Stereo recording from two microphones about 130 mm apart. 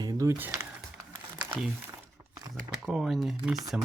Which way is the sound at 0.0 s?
25° right (ahead or behind).